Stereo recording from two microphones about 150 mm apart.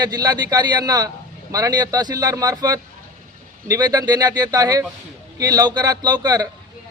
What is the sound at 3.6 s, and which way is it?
A man's voice, 25° right (ahead or behind).